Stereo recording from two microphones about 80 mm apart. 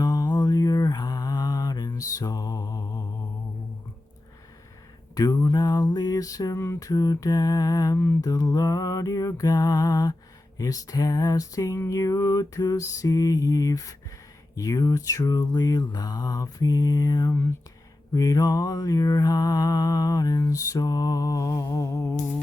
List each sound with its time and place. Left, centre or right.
0.0 s mantra: left
5.1 s a sound: left
5.5 s mantra: left
7.9 s mantra: left
8.2 s mantra: left